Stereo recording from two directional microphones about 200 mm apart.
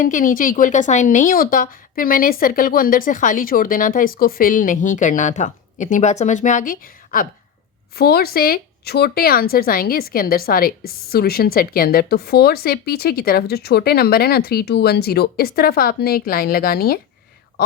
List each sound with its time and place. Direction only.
0.0 s speech: 40° left (ahead or behind)